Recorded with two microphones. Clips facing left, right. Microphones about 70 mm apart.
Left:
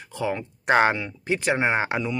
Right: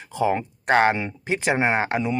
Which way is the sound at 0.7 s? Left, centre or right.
Centre.